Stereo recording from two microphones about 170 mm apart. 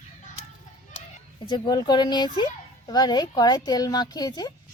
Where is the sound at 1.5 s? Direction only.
25° left (ahead or behind).